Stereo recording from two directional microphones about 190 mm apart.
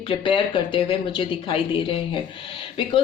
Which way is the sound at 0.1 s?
25° left (ahead or behind).